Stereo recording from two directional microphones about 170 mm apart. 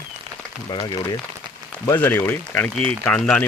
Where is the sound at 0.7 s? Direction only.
25° left (ahead or behind).